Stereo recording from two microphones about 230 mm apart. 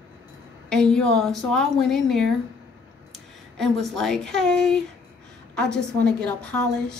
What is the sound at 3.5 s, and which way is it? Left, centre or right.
A woman's voice, centre.